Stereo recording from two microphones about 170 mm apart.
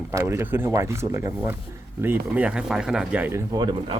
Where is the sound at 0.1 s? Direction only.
15° right (ahead or behind).